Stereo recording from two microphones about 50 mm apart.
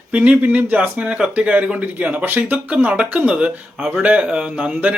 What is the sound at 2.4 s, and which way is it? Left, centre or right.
Speech, right.